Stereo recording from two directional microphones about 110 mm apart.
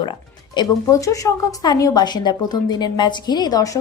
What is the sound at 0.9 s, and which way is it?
A woman's voice, 30° left (ahead or behind).